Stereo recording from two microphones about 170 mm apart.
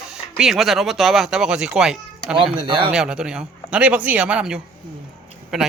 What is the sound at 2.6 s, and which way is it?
Speech, 30° right (ahead or behind).